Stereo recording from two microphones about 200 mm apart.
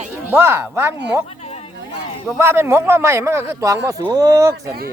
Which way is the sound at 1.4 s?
30° left (ahead or behind).